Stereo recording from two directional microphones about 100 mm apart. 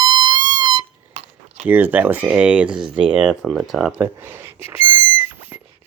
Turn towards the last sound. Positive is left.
turn(degrees=-20)  # may be behind; listen again after turning